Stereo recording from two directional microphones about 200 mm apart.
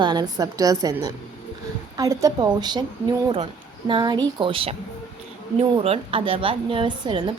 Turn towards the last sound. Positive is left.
turn(degrees=-25)  # may be behind; listen again after turning